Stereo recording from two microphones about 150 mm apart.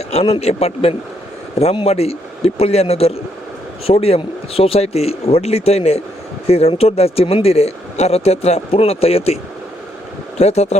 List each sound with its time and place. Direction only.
0.1 s speech: 45° left (ahead or behind)